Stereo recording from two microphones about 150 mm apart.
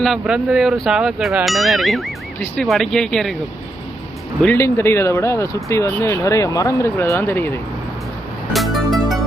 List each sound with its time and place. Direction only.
0.0 s speech: 5° right (ahead or behind)
4.4 s speech: 15° left (ahead or behind)
8.5 s music: centre (ahead or behind)